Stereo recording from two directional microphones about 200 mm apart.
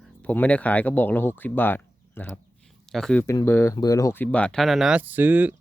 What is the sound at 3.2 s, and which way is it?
Speech, 15° left (ahead or behind).